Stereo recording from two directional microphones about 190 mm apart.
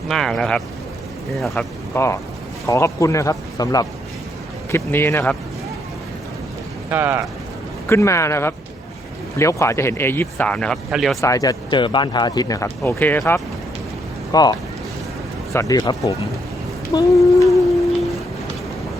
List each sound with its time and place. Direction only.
0.1 s speech: centre (ahead or behind)
2.0 s speech: 15° left (ahead or behind)
6.9 s speech: 10° right (ahead or behind)
7.9 s speech: 15° left (ahead or behind)
11.2 s speech: 15° left (ahead or behind)
15.5 s speech: 20° left (ahead or behind)